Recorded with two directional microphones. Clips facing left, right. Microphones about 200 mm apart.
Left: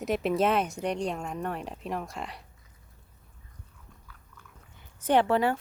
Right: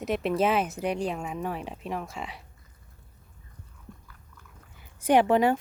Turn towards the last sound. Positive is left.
turn(degrees=-15)  # may be behind; listen again after turning